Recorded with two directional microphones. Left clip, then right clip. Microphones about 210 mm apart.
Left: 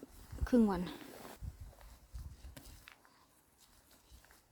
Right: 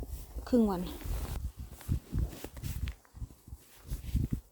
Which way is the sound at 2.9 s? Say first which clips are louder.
Right 7 dB; 45° right (ahead or behind).